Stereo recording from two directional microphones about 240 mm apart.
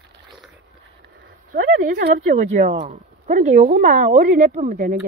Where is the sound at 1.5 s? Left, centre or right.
Right.